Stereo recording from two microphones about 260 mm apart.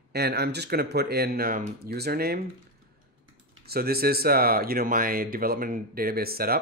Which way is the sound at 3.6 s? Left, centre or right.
Right.